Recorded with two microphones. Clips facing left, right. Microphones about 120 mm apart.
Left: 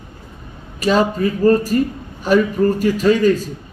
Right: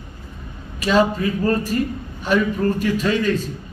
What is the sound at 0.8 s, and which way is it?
A man's voice, 40° left (ahead or behind).